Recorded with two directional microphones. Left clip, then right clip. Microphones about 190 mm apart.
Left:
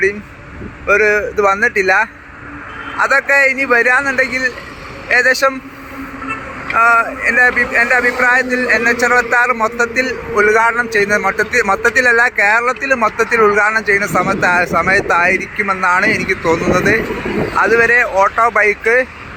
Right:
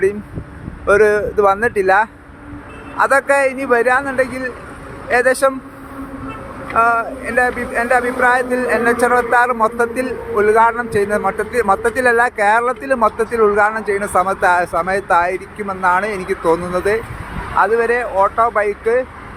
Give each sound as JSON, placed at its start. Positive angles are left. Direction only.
{"t": 0.9, "sound": "speech", "side_deg": -20}
{"t": 6.7, "sound": "speech", "side_deg": -5}